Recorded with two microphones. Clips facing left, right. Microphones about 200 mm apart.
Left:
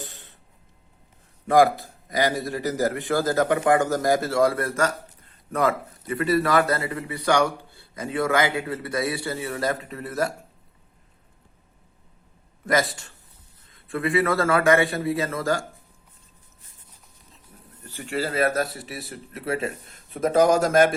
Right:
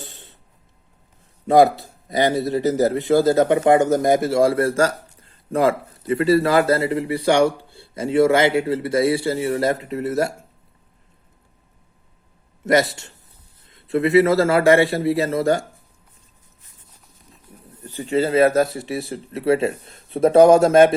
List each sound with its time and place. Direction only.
1.5 s a man's voice: 25° right (ahead or behind)
12.6 s a man's voice: 25° right (ahead or behind)
17.5 s a sound: 15° right (ahead or behind)
17.8 s a man's voice: 20° right (ahead or behind)